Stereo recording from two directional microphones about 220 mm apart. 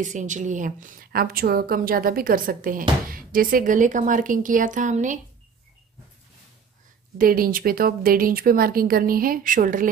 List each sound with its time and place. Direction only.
0.0 s a woman's voice: 35° right (ahead or behind)
7.2 s a woman's voice: 40° right (ahead or behind)